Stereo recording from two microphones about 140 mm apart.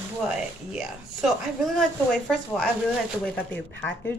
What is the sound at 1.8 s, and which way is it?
A man's voice, centre (ahead or behind).